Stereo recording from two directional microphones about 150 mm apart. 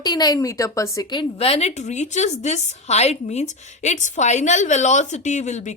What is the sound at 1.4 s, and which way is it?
A woman's voice, 45° left (ahead or behind).